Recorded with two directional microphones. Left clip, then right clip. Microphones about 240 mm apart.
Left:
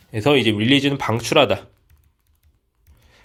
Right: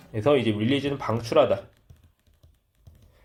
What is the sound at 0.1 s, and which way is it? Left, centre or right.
Speech, left.